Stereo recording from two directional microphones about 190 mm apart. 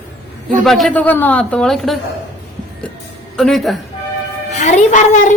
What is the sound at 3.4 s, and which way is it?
Speech, centre (ahead or behind).